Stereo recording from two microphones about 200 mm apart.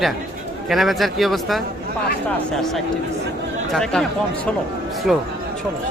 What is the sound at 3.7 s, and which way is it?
Speech, centre (ahead or behind).